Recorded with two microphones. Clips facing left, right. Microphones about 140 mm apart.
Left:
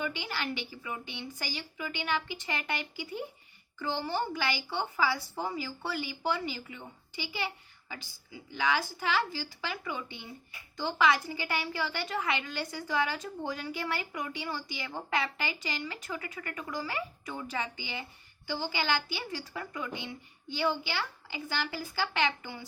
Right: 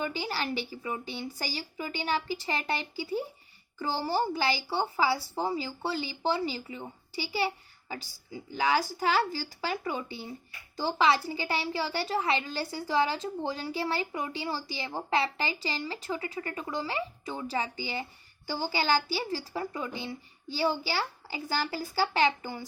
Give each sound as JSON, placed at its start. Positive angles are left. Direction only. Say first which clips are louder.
{"t": 0.0, "sound": "a woman's voice", "louder": "right 3 dB", "side_deg": -35}